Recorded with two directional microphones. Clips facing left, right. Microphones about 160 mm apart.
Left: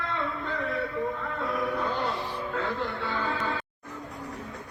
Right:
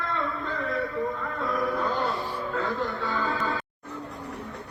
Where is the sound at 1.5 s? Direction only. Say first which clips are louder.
Right 3 dB; 40° right (ahead or behind).